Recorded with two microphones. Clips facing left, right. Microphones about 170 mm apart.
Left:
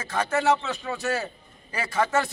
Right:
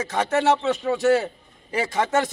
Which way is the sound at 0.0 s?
20° right (ahead or behind).